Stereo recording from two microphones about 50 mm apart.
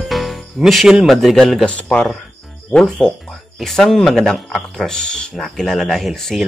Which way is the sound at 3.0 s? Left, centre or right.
Centre.